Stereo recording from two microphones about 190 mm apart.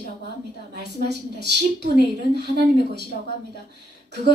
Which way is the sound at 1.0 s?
60° right (ahead or behind).